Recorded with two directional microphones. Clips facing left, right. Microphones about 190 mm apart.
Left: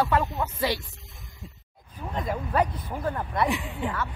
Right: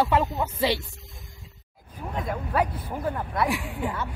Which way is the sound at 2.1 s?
5° right (ahead or behind).